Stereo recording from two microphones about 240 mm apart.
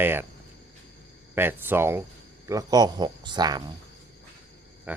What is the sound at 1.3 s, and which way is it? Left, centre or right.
Speech, centre.